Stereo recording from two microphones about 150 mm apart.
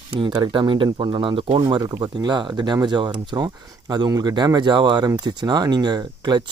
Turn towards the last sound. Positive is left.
turn(degrees=-30)  # may be behind; listen again after turning